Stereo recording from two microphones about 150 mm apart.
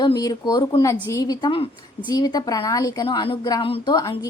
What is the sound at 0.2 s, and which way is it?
A woman's voice, 25° left (ahead or behind).